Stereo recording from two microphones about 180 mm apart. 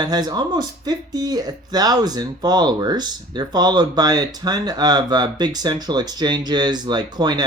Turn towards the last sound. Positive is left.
turn(degrees=-25)  # may be behind; listen again after turning